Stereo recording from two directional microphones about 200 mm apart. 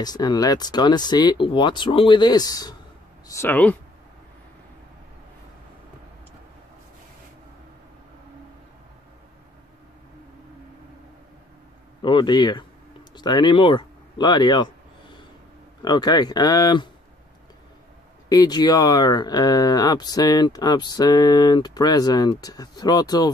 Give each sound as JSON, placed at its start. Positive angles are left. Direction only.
{"t": 0.0, "sound": "speech", "side_deg": 20}
{"t": 12.0, "sound": "speech", "side_deg": 25}
{"t": 18.3, "sound": "speech", "side_deg": 20}